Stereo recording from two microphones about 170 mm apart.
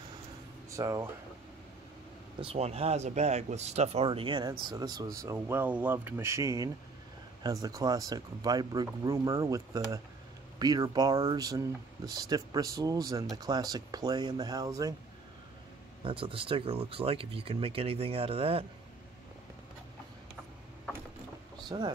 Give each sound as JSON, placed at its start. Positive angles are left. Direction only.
{"t": 0.7, "sound": "speech", "side_deg": -20}
{"t": 2.4, "sound": "speech", "side_deg": -40}
{"t": 16.0, "sound": "speech", "side_deg": -30}
{"t": 21.6, "sound": "speech", "side_deg": -25}